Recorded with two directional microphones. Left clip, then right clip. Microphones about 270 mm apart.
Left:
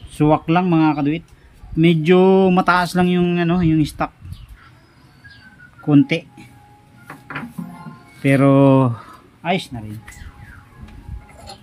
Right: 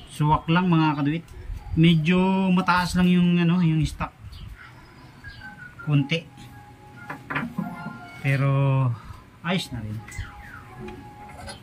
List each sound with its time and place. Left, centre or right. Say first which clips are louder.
0.1 s mantra: left 7 dB; centre
5.9 s mantra: left 11 dB; centre
8.2 s speech: left 13 dB; centre